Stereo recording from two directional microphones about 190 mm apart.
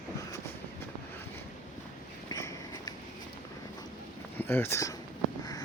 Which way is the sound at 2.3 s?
20° left (ahead or behind).